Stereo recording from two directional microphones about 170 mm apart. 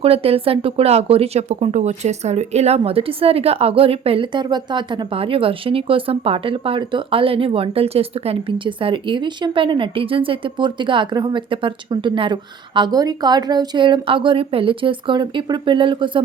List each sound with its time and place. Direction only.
0.0 s speech: 35° right (ahead or behind)